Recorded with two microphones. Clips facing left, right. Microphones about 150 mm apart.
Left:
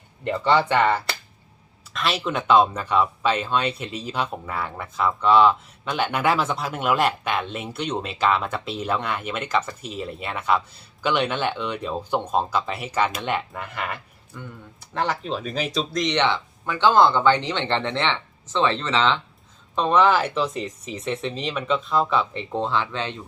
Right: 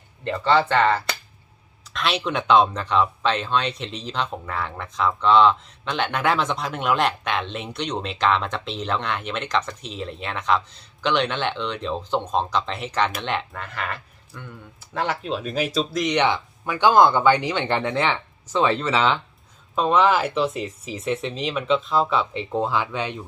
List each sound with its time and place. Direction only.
0.3 s speech: 15° left (ahead or behind)
14.8 s speech: 5° right (ahead or behind)